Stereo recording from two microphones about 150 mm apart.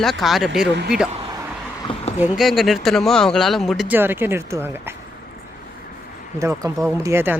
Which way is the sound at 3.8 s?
15° right (ahead or behind).